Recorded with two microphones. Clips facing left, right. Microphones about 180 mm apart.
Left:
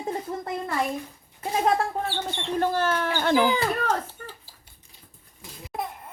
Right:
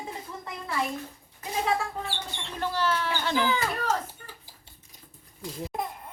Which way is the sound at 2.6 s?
50° left (ahead or behind).